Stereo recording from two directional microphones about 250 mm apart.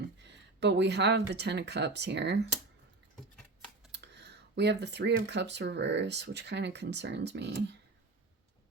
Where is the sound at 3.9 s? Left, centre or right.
Right.